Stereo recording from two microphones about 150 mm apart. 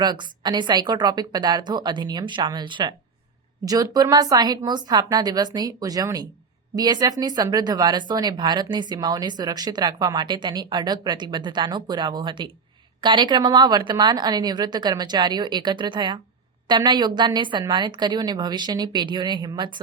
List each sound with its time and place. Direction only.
0.0 s speech: 30° right (ahead or behind)